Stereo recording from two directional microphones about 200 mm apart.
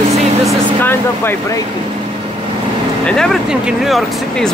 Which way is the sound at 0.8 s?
10° left (ahead or behind).